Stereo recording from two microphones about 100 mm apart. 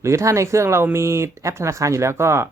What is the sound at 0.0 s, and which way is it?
Speech, 30° right (ahead or behind).